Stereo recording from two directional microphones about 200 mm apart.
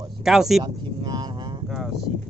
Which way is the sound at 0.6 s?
20° right (ahead or behind).